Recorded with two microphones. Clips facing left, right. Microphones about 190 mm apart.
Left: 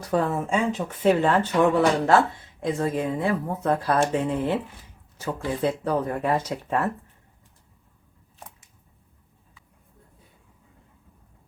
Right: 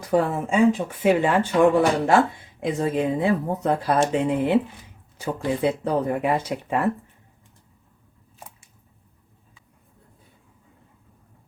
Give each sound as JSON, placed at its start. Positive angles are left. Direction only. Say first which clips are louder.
{"t": 0.0, "sound": "speech", "louder": "right 2 dB", "side_deg": -10}